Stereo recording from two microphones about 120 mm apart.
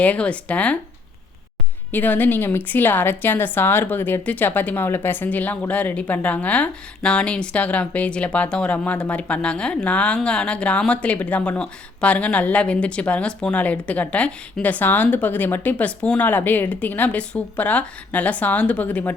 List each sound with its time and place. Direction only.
0.0 s a woman's voice: 10° left (ahead or behind)
1.9 s a woman's voice: 15° left (ahead or behind)